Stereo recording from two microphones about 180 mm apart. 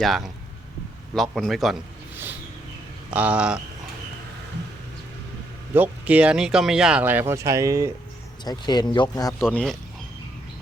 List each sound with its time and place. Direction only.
0.0 s a man's voice: centre (ahead or behind)
3.1 s speech: 10° right (ahead or behind)
5.7 s speech: 10° right (ahead or behind)
8.4 s speech: 25° left (ahead or behind)
9.5 s a man's voice: 5° left (ahead or behind)